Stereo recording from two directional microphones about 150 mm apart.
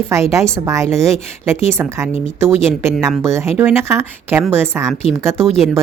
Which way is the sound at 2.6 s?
15° right (ahead or behind).